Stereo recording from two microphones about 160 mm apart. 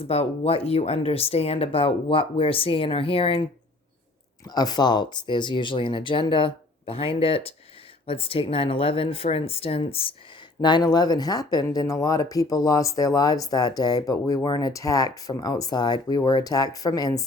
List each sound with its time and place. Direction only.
0.1 s speech: 40° left (ahead or behind)
4.4 s speech: 25° left (ahead or behind)